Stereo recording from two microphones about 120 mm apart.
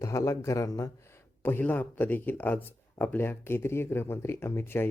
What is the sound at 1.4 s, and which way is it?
Speech, 15° left (ahead or behind).